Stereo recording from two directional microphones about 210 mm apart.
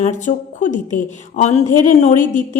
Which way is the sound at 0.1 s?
35° left (ahead or behind).